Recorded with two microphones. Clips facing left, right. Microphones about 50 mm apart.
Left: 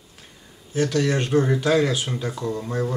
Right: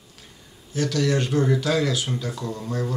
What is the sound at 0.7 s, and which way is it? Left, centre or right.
Speech, left.